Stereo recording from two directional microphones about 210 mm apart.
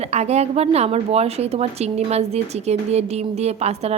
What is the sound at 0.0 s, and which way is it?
A woman's voice, 30° right (ahead or behind).